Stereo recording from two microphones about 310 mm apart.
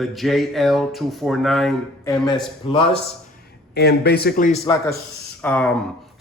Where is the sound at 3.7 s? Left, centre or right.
Left.